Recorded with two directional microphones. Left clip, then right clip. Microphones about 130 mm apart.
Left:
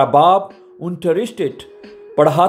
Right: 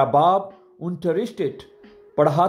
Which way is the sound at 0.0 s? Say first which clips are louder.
Left 6 dB; 45° left (ahead or behind).